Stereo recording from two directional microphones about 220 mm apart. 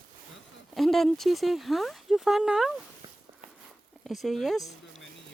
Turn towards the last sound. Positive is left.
turn(degrees=0)  # may be behind; listen again after turning